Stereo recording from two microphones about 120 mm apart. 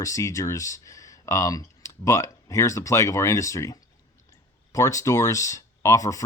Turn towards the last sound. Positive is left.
turn(degrees=25)  # may be behind; listen again after turning